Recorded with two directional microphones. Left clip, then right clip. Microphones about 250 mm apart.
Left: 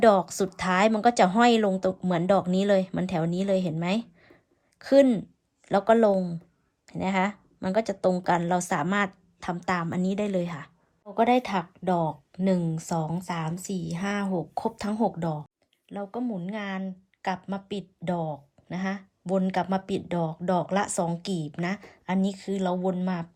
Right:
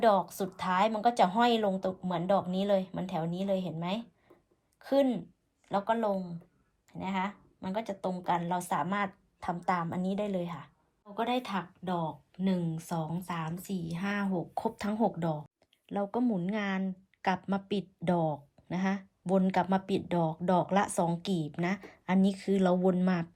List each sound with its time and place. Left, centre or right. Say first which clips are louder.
0.0 s a woman's voice: left 6 dB; centre